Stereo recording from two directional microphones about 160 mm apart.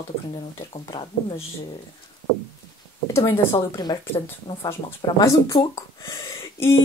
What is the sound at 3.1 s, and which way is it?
Speech, 15° left (ahead or behind).